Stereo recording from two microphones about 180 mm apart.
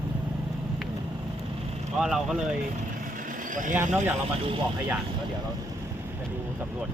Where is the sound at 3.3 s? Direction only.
45° right (ahead or behind).